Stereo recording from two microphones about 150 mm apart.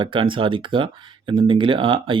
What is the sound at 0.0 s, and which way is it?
Speech, 35° right (ahead or behind).